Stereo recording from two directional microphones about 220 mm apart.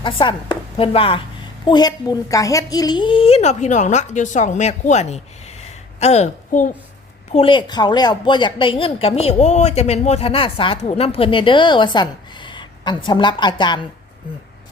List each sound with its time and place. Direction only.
0.0 s a woman's voice: 20° left (ahead or behind)
7.3 s a woman's voice: 20° left (ahead or behind)